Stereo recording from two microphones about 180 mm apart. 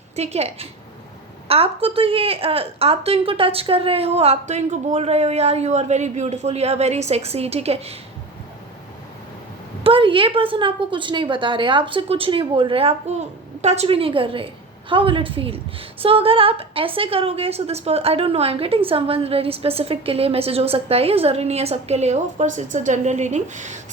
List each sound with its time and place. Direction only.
0.2 s a woman's voice: 35° right (ahead or behind)
9.8 s a woman's voice: 30° right (ahead or behind)